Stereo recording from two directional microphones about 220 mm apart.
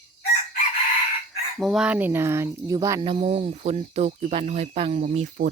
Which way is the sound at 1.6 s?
Centre (ahead or behind).